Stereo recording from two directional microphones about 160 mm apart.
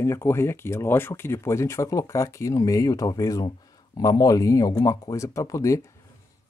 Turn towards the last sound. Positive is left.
turn(degrees=20)  # may be behind; listen again after turning